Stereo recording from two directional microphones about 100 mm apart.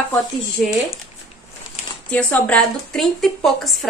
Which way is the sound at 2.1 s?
15° left (ahead or behind).